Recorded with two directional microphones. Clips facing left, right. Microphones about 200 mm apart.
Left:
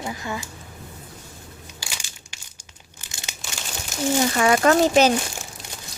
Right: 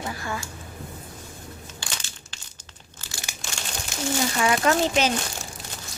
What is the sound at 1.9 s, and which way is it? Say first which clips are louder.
Crushing: right 1 dB; 10° left (ahead or behind).